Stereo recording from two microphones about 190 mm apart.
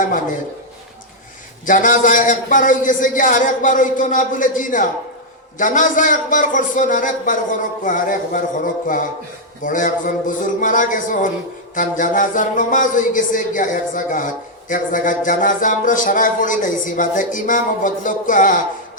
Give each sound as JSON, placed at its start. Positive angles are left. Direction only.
{"t": 0.0, "sound": "speech", "side_deg": 45}
{"t": 1.6, "sound": "music", "side_deg": 45}